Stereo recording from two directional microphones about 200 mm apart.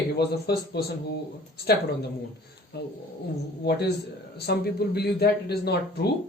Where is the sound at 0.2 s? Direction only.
55° left (ahead or behind).